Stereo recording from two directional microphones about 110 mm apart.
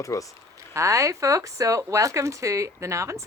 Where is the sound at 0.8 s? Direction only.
30° right (ahead or behind).